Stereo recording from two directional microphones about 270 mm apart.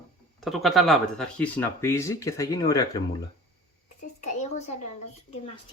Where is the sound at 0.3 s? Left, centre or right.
Centre.